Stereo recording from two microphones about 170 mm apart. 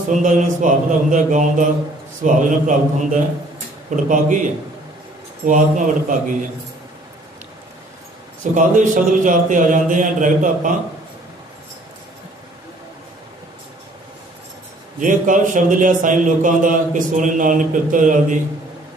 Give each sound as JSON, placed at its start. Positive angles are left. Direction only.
{"t": 0.2, "sound": "a man's voice", "side_deg": -50}
{"t": 5.5, "sound": "a man's voice", "side_deg": -50}
{"t": 8.5, "sound": "a man's voice", "side_deg": -50}
{"t": 15.0, "sound": "a man's voice", "side_deg": -50}